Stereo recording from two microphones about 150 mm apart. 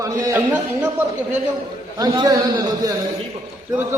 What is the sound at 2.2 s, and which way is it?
Speech, 25° right (ahead or behind).